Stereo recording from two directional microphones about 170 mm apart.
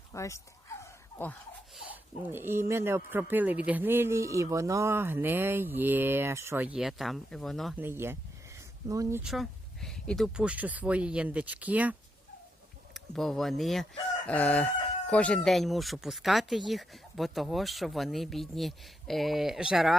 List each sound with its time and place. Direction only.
0.1 s speech: 15° left (ahead or behind)
1.7 s speech: 10° right (ahead or behind)
7.8 s speech: 15° right (ahead or behind)
9.2 s speech: centre (ahead or behind)
14.3 s chicken: 10° left (ahead or behind)
15.4 s speech: centre (ahead or behind)